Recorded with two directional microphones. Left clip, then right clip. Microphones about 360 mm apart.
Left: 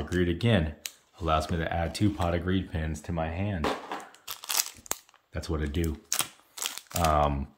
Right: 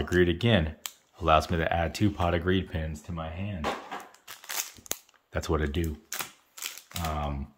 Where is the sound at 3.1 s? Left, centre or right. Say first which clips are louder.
Left 7 dB; centre.